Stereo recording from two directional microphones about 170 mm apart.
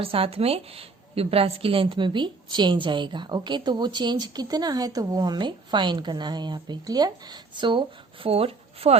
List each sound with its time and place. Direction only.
0.0 s a woman's voice: 35° right (ahead or behind)